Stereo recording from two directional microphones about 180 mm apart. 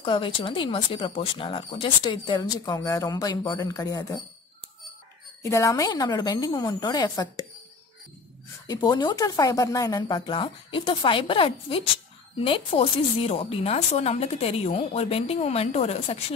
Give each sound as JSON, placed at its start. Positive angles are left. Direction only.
{"t": 0.0, "sound": "speech", "side_deg": 30}
{"t": 5.4, "sound": "speech", "side_deg": 15}
{"t": 8.6, "sound": "speech", "side_deg": 25}